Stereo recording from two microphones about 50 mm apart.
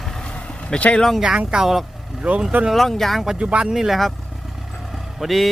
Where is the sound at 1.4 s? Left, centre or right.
Centre.